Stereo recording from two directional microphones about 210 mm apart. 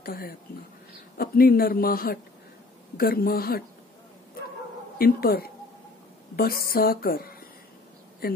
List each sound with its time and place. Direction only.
0.0 s speech: 45° left (ahead or behind)
4.9 s speech: 45° left (ahead or behind)